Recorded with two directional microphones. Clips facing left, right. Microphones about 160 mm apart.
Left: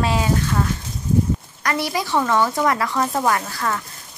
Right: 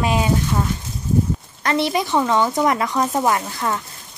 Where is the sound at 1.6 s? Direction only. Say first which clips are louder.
Right 4 dB; 25° right (ahead or behind).